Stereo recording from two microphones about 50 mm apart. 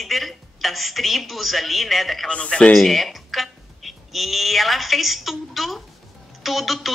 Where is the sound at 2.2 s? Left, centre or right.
Left.